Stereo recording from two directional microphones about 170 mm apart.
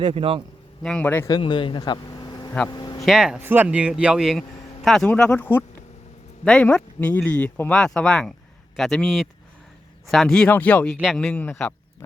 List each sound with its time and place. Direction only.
0.0 s a man's voice: 30° right (ahead or behind)
0.8 s speech: 5° left (ahead or behind)
1.3 s speech: 30° left (ahead or behind)
2.6 s a sound: 25° left (ahead or behind)
3.0 s speech: 5° right (ahead or behind)
10.9 s speech: centre (ahead or behind)
11.3 s speech: 10° left (ahead or behind)